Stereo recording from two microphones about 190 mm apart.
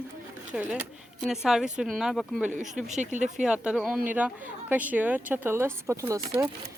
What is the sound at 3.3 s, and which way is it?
Speech, 5° right (ahead or behind).